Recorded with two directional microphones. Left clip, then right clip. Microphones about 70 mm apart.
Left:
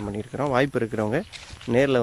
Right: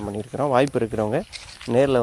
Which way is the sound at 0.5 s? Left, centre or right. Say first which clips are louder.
Right 3 dB; right.